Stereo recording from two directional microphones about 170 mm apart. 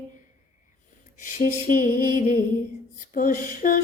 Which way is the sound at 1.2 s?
50° left (ahead or behind).